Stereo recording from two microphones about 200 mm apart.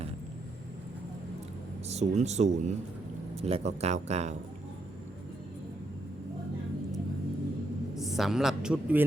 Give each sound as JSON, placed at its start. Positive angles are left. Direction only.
{"t": 1.9, "sound": "speech", "side_deg": -35}
{"t": 8.0, "sound": "a woman's voice", "side_deg": 0}